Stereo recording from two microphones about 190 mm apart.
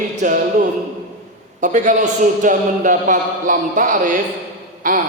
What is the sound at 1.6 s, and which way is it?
A man's voice, 40° right (ahead or behind).